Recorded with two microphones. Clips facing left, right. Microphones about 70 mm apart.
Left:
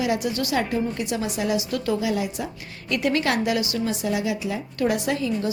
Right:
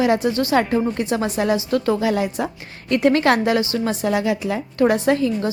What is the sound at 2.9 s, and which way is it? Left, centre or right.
A woman's voice, right.